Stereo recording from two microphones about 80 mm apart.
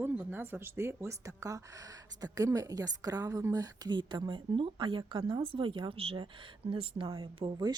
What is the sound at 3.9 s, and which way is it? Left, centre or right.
Speech, right.